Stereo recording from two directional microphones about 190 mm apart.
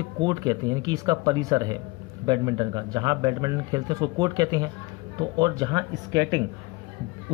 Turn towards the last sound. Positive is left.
turn(degrees=-20)  # may be behind; listen again after turning